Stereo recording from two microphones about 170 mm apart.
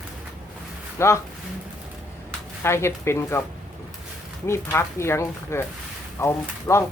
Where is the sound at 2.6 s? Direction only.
15° left (ahead or behind).